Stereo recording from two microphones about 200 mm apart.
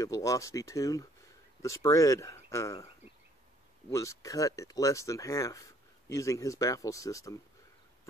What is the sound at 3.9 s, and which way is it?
Speech, 15° left (ahead or behind).